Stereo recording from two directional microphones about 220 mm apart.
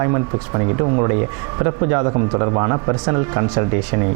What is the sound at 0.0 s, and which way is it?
Speech, 25° right (ahead or behind).